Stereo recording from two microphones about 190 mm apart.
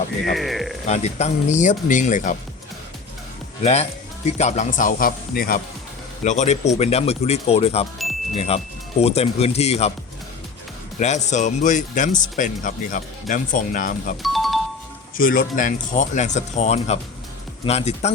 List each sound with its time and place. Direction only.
0.3 s speech: centre (ahead or behind)
0.9 s speech: 35° left (ahead or behind)
3.6 s speech: 35° left (ahead or behind)
6.2 s speech: 40° left (ahead or behind)
11.0 s speech: 40° left (ahead or behind)
14.2 s music: centre (ahead or behind)
15.2 s speech: 45° left (ahead or behind)